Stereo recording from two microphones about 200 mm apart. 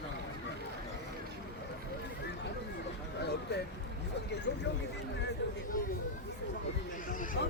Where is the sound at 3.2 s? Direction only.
55° left (ahead or behind).